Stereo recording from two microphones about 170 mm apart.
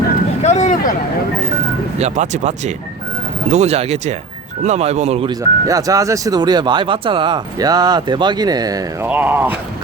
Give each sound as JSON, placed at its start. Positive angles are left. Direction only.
{"t": 0.4, "sound": "vehicle", "side_deg": 45}
{"t": 2.0, "sound": "speech", "side_deg": -45}
{"t": 5.4, "sound": "speech", "side_deg": -20}
{"t": 9.0, "sound": "speech", "side_deg": -10}